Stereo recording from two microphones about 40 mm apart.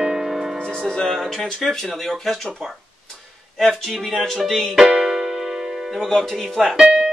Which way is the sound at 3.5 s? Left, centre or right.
Centre.